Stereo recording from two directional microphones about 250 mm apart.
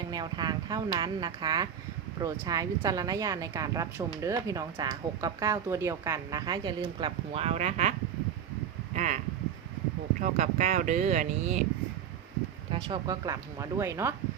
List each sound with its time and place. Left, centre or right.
0.1 s speech: centre
9.0 s speech: right
12.7 s speech: centre